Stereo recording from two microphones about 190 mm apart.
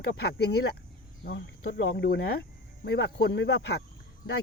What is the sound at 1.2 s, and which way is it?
Speech, 70° left (ahead or behind).